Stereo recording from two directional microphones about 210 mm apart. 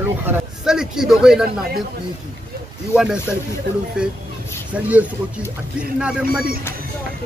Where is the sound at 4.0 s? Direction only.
5° right (ahead or behind).